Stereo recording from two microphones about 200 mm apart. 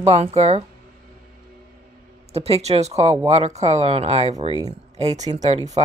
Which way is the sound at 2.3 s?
30° right (ahead or behind).